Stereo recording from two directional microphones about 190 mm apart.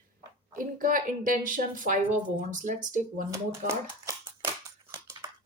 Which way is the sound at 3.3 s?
15° right (ahead or behind).